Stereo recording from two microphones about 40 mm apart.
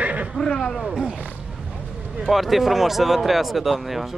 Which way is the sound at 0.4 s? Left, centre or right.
Centre.